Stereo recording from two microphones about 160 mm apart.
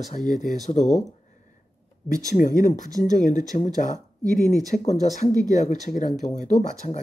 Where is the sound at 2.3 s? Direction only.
55° left (ahead or behind).